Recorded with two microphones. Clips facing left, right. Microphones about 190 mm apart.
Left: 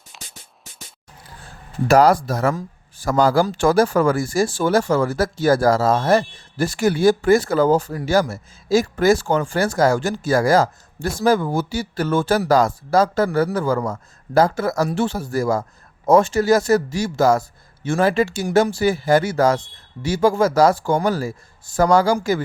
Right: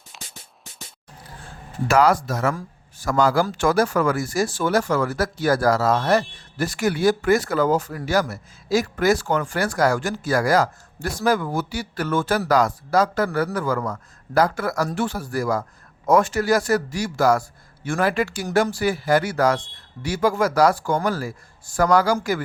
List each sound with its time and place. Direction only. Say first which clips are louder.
0.1 s music: even; centre (ahead or behind)
1.9 s a man's voice: left 4 dB; 35° left (ahead or behind)